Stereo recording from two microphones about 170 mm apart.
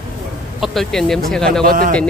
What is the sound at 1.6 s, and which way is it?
Speech, 55° right (ahead or behind).